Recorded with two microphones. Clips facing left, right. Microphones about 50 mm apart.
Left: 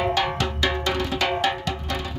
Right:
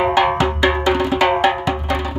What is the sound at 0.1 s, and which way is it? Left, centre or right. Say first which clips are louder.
Music: right 8 dB; right.